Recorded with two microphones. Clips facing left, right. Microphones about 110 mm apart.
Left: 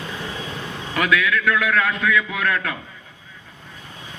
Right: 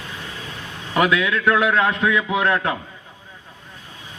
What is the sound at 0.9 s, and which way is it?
A man's voice, 25° right (ahead or behind).